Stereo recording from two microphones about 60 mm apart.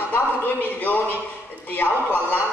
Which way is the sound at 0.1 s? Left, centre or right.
Left.